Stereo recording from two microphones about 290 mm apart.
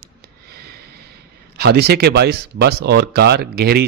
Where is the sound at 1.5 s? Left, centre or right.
Right.